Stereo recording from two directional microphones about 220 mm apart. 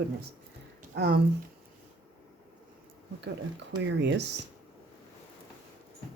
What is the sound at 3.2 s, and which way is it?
Speech, 55° right (ahead or behind).